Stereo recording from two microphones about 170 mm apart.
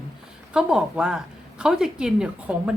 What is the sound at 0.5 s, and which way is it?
A woman's voice, 5° right (ahead or behind).